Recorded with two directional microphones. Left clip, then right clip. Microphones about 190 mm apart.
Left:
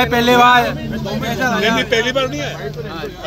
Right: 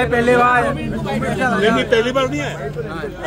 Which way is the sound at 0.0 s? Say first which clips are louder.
Left 2 dB; 55° left (ahead or behind).